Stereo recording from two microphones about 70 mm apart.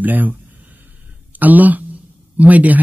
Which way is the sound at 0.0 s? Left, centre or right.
Right.